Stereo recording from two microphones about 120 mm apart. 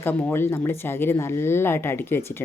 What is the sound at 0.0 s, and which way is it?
Speech, 15° left (ahead or behind).